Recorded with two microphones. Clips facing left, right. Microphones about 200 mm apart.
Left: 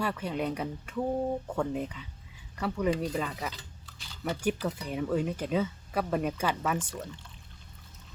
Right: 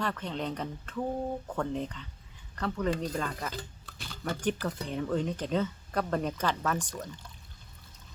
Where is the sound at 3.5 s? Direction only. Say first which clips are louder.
Right 2 dB; 55° right (ahead or behind).